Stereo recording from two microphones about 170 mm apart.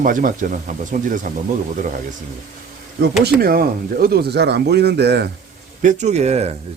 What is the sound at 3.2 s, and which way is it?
Speech, 60° right (ahead or behind).